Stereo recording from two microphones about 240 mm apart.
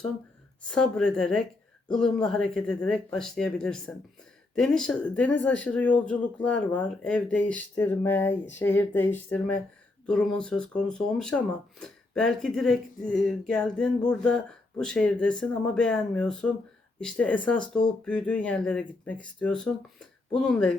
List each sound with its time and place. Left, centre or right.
0.6 s speech: centre